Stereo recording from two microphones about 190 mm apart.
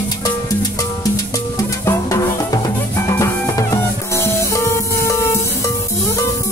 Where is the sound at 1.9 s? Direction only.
15° left (ahead or behind).